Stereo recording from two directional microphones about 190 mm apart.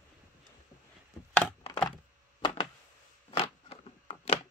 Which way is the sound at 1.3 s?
5° left (ahead or behind).